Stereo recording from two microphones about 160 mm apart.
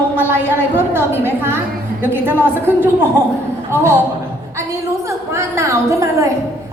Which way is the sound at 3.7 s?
15° right (ahead or behind).